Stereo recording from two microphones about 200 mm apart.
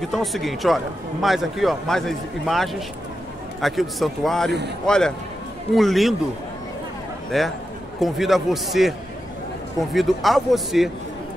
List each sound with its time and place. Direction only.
0.1 s a man's voice: centre (ahead or behind)
7.2 s a man's voice: centre (ahead or behind)